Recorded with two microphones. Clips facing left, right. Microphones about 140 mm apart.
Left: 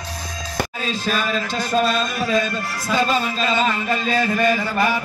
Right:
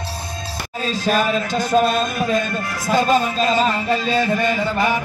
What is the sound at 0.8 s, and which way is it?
A man's voice, 40° right (ahead or behind).